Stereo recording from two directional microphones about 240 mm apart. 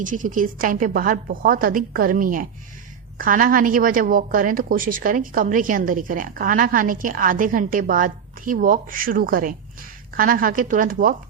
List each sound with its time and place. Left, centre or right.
0.0 s a woman's voice: right